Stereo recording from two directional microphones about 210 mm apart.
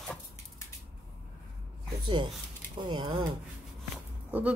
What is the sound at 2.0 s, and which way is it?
Speech, 20° right (ahead or behind).